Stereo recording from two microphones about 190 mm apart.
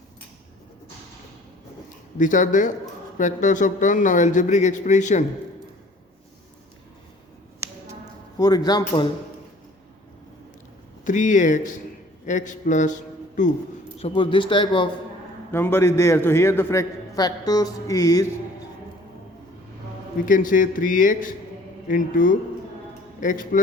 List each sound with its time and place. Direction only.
2.1 s a man's voice: 40° left (ahead or behind)
7.6 s a sound: 15° right (ahead or behind)
8.4 s speech: 20° left (ahead or behind)
11.0 s a man's voice: 40° left (ahead or behind)
14.0 s speech: 25° left (ahead or behind)
15.5 s a man's voice: 10° left (ahead or behind)
20.2 s a man's voice: 45° left (ahead or behind)